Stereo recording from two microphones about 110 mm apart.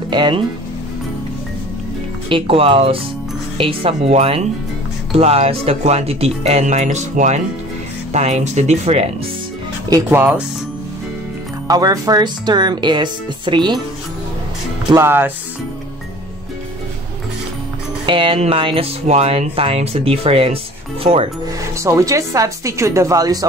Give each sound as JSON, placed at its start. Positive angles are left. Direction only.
{"t": 0.1, "sound": "speech", "side_deg": -50}
{"t": 2.2, "sound": "speech", "side_deg": -55}
{"t": 9.8, "sound": "speech", "side_deg": -35}
{"t": 10.1, "sound": "speech", "side_deg": -10}
{"t": 11.6, "sound": "speech", "side_deg": -35}
{"t": 15.0, "sound": "speech", "side_deg": -20}
{"t": 18.0, "sound": "speech", "side_deg": -50}
{"t": 19.0, "sound": "speech", "side_deg": -70}
{"t": 21.7, "sound": "speech", "side_deg": -30}